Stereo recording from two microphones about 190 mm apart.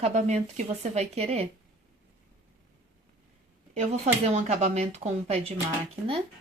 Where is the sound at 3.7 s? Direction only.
35° right (ahead or behind).